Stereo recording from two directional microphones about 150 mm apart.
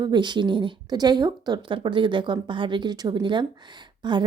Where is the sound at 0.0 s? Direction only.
30° right (ahead or behind).